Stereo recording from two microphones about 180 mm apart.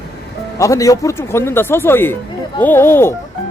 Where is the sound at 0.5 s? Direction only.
15° left (ahead or behind).